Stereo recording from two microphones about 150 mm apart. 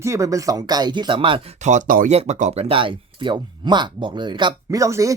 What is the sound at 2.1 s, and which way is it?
Speech, 45° right (ahead or behind).